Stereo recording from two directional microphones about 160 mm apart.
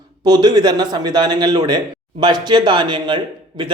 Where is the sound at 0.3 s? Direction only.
25° right (ahead or behind).